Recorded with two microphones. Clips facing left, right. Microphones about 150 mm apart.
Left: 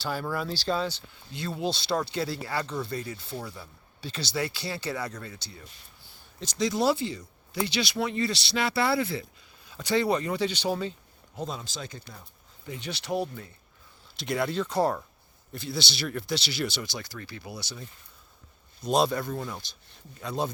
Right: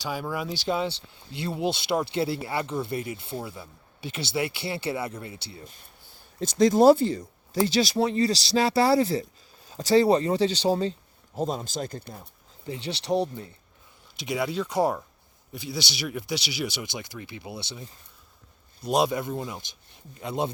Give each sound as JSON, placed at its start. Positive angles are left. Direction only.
{"t": 0.0, "sound": "speech", "side_deg": -10}
{"t": 6.4, "sound": "speech", "side_deg": -50}
{"t": 11.3, "sound": "speech", "side_deg": -45}
{"t": 12.6, "sound": "speech", "side_deg": -30}
{"t": 14.2, "sound": "speech", "side_deg": -10}
{"t": 18.8, "sound": "speech", "side_deg": -10}